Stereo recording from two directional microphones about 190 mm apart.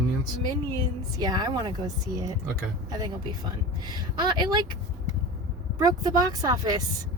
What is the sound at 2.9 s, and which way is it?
Speech, 20° right (ahead or behind).